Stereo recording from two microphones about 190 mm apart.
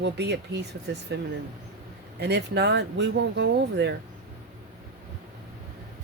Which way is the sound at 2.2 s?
60° right (ahead or behind).